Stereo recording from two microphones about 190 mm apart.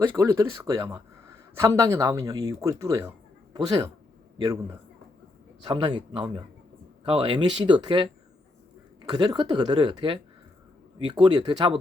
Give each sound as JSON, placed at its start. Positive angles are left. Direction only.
{"t": 0.0, "sound": "a man's voice", "side_deg": -15}
{"t": 5.6, "sound": "speech", "side_deg": -25}